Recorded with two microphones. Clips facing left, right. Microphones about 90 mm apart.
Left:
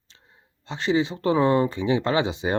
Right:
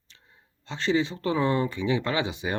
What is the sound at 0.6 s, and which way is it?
Speech, 20° left (ahead or behind).